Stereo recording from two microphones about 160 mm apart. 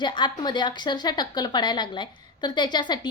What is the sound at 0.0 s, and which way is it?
A woman's voice, 30° left (ahead or behind).